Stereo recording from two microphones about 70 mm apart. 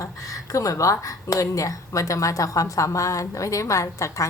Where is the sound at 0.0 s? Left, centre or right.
Left.